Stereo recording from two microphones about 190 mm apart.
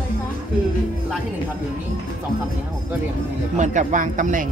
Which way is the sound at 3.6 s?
40° right (ahead or behind).